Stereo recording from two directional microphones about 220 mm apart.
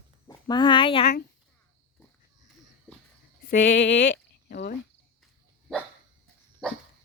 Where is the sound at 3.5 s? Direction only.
55° left (ahead or behind).